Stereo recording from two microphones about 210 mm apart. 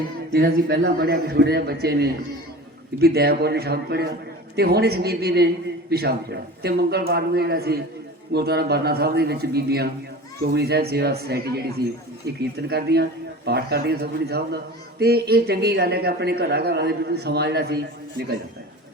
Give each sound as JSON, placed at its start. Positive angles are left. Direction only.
{"t": 0.3, "sound": "speech", "side_deg": -50}